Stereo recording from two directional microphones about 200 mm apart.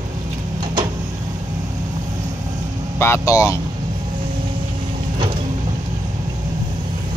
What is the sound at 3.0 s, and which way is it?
Speech, 15° left (ahead or behind).